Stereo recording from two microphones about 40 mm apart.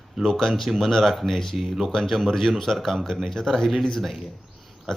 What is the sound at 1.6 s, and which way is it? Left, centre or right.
Speech, centre.